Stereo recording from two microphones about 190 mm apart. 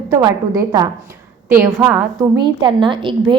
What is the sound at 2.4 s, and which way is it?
Speech, 25° right (ahead or behind).